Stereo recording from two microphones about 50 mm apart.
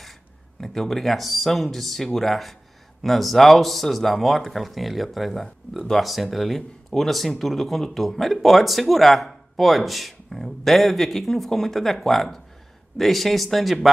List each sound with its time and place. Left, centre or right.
0.6 s speech: centre